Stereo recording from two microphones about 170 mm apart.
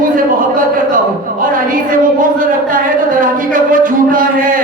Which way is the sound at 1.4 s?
55° right (ahead or behind).